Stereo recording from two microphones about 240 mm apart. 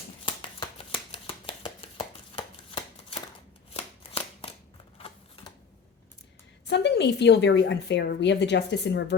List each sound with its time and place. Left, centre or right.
0.3 s a sound: left
3.8 s shuffling cards: left
4.9 s typewriter: left
6.7 s a woman's voice: left